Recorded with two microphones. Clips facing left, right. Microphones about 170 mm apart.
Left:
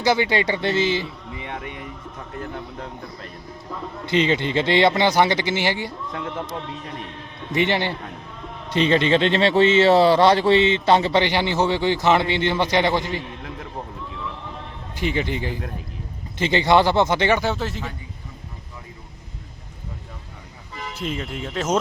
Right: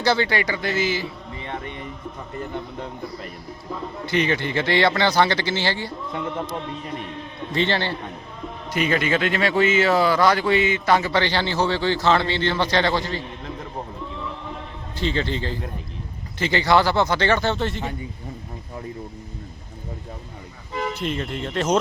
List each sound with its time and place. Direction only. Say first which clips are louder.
0.0 s speech: left 1 dB; 15° left (ahead or behind)
1.5 s a man's voice: right 2 dB; 10° left (ahead or behind)
4.1 s speech: left 2 dB; 20° left (ahead or behind)
6.1 s speech: right 2 dB; centre (ahead or behind)
7.5 s a man's voice: left 2 dB; 15° left (ahead or behind)
8.7 s speech: left 4 dB; 25° left (ahead or behind)
14.9 s a man's voice: even; 15° left (ahead or behind)
20.9 s speech: right 2 dB; centre (ahead or behind)